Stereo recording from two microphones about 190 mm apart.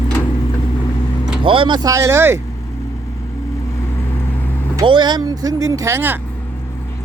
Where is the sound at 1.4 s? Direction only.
25° right (ahead or behind).